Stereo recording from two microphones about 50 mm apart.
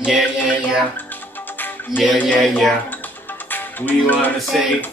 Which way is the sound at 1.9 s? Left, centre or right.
Centre.